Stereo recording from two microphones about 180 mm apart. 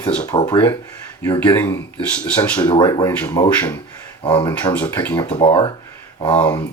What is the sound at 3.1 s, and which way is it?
Speech, 10° left (ahead or behind).